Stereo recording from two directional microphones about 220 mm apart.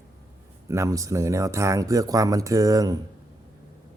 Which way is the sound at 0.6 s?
15° right (ahead or behind).